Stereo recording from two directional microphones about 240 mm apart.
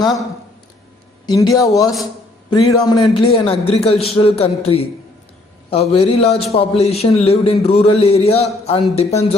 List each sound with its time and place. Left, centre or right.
1.3 s a man's voice: centre